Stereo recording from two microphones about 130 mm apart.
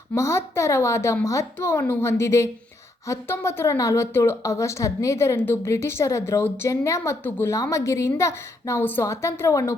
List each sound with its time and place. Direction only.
0.1 s a woman's voice: 20° left (ahead or behind)